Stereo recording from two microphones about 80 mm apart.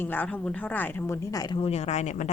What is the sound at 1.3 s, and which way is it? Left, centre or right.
Speech, left.